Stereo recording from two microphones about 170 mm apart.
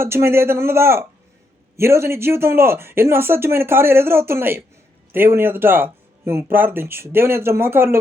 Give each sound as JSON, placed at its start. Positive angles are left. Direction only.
{"t": 0.0, "sound": "speech", "side_deg": -15}